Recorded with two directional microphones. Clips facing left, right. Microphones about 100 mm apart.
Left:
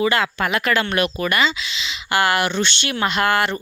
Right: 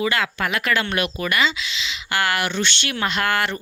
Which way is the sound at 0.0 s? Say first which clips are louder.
Left 3 dB; 30° left (ahead or behind).